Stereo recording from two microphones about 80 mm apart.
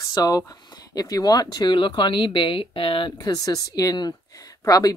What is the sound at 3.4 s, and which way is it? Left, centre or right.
A woman's voice, left.